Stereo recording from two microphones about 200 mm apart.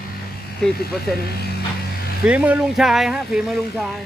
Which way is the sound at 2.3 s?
5° right (ahead or behind).